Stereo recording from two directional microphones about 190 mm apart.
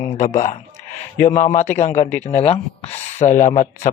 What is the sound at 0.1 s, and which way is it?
Speech, 40° left (ahead or behind).